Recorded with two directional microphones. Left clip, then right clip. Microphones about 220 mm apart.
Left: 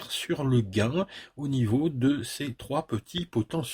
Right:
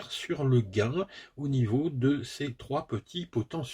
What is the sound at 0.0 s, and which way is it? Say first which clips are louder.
Speech: left 2 dB; 45° left (ahead or behind).